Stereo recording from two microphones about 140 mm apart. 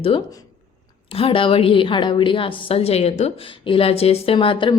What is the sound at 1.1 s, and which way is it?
A woman's voice, 40° left (ahead or behind).